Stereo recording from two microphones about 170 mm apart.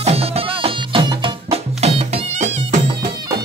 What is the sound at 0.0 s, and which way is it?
Music, 35° right (ahead or behind).